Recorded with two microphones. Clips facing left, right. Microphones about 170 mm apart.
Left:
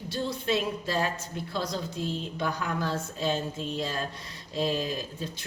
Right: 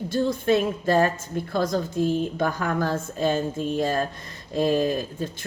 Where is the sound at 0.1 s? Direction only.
50° right (ahead or behind).